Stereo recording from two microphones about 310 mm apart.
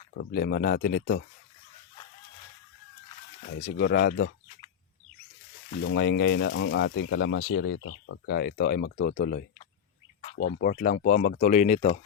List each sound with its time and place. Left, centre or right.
0.2 s speech: left
3.8 s speech: left
5.7 s speech: left